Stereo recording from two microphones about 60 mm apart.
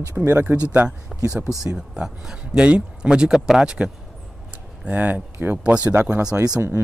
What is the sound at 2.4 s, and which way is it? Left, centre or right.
Speech, right.